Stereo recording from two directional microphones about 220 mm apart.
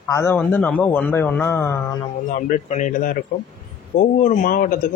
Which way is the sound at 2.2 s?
35° left (ahead or behind).